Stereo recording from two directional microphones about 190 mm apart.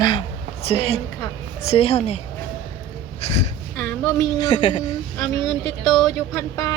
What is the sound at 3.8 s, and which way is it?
Speech, 15° left (ahead or behind).